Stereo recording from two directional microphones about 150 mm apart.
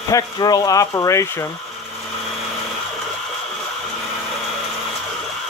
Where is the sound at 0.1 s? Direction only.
25° left (ahead or behind).